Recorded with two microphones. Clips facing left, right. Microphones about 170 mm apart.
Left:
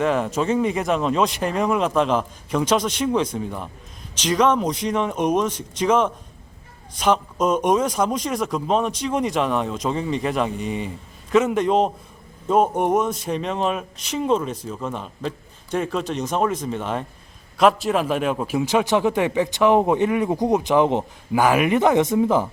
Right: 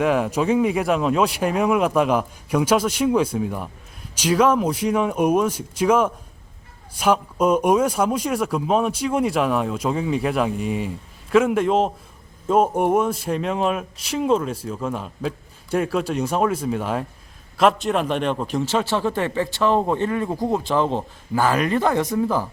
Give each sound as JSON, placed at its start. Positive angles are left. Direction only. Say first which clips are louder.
{"t": 0.0, "sound": "a man's voice", "louder": "right 1 dB", "side_deg": -10}